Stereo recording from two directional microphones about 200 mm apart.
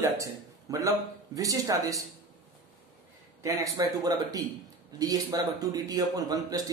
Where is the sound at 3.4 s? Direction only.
15° right (ahead or behind).